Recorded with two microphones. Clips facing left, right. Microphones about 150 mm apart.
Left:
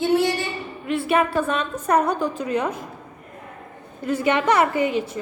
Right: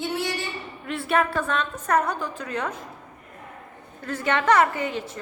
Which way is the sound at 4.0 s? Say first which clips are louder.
Left 5 dB; 10° left (ahead or behind).